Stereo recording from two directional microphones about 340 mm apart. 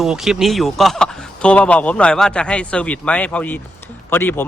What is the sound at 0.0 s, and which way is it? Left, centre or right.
Speech, centre.